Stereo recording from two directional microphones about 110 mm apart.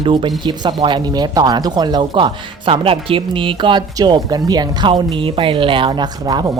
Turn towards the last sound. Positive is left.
turn(degrees=-40)  # may be behind; listen again after turning